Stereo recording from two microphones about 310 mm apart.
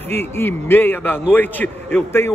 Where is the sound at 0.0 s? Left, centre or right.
Centre.